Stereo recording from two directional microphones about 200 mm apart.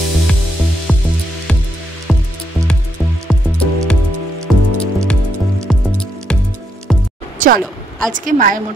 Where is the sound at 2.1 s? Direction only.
Centre (ahead or behind).